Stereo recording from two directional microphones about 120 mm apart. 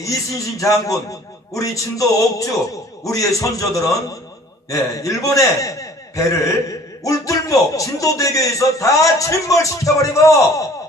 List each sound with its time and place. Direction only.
0.0 s a man's voice: 30° left (ahead or behind)